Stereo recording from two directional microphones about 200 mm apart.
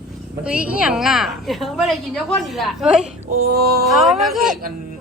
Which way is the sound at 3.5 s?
50° right (ahead or behind).